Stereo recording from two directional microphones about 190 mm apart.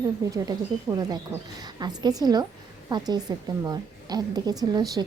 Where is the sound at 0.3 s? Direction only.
20° right (ahead or behind).